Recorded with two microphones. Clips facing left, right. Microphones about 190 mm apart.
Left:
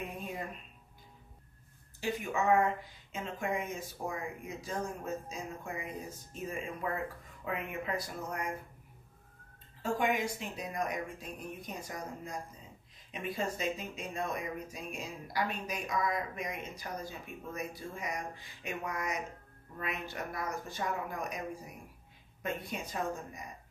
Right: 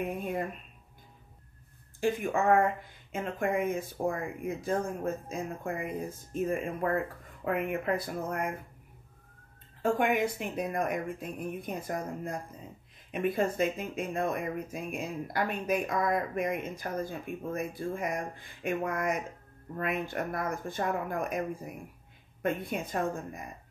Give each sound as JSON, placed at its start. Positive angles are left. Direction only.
{"t": 0.0, "sound": "speech", "side_deg": -55}
{"t": 2.0, "sound": "speech", "side_deg": -50}
{"t": 9.8, "sound": "speech", "side_deg": -55}